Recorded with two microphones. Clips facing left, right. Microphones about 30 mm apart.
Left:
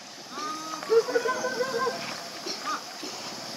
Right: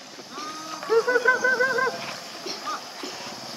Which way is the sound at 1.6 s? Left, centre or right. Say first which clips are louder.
Right 5 dB; right.